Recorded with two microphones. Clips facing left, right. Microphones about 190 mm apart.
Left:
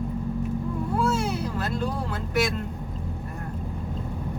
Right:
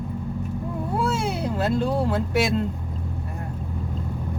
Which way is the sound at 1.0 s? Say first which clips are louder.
Right 1 dB; 30° right (ahead or behind).